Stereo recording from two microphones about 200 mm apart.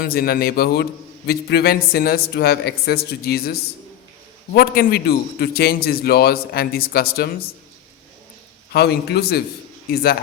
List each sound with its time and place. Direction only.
0.0 s a man's voice: 50° left (ahead or behind)
8.7 s a man's voice: 55° left (ahead or behind)